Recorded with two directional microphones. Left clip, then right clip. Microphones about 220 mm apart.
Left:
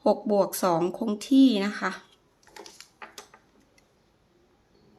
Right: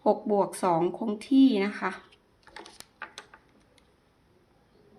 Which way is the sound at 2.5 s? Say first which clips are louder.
Even; 30° right (ahead or behind).